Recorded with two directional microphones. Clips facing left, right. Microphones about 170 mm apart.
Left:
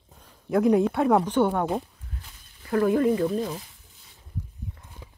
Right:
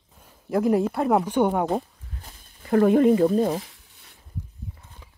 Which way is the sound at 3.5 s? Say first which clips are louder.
Right 8 dB; 75° right (ahead or behind).